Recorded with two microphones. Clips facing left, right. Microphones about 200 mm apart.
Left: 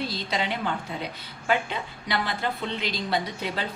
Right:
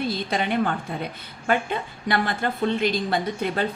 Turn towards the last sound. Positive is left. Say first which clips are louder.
# right 4 dB
turn(degrees=-50)  # may be behind; listen again after turning